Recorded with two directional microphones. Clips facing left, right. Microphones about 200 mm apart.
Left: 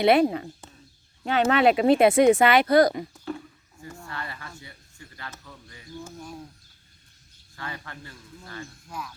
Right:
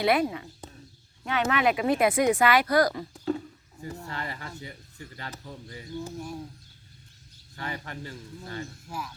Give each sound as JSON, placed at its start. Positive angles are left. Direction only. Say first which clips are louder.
{"t": 0.0, "sound": "speech", "louder": "left 5 dB", "side_deg": 30}
{"t": 3.8, "sound": "a sound", "louder": "right 2 dB", "side_deg": -20}
{"t": 5.3, "sound": "speech", "louder": "right 5 dB", "side_deg": -30}
{"t": 7.5, "sound": "a man's voice", "louder": "right 2 dB", "side_deg": -20}